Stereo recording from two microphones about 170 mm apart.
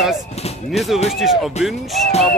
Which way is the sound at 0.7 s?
Centre (ahead or behind).